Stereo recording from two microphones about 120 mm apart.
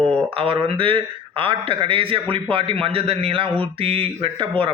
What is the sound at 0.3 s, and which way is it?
Speech, 50° right (ahead or behind).